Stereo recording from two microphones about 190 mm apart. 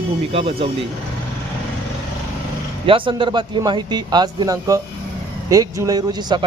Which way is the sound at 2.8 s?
25° right (ahead or behind).